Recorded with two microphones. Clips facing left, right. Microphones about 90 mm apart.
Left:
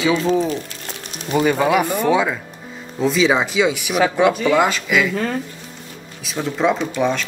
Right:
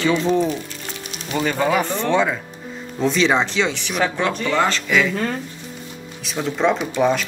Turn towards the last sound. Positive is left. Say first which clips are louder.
# right 1 dB
turn(degrees=0)  # may be behind; listen again after turning